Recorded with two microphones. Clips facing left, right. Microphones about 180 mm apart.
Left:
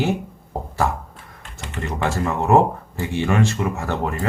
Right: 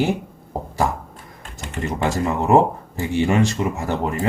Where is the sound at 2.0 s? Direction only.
15° right (ahead or behind).